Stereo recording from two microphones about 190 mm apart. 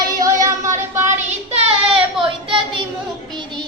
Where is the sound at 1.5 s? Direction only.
30° right (ahead or behind).